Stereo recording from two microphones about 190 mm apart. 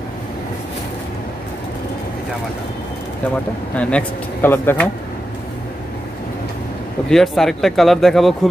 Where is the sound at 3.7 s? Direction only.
5° left (ahead or behind).